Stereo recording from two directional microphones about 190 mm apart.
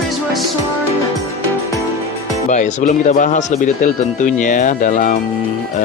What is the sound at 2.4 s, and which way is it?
Speech, 40° left (ahead or behind).